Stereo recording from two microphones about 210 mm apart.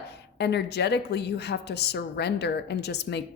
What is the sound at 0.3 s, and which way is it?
A woman's voice, 55° left (ahead or behind).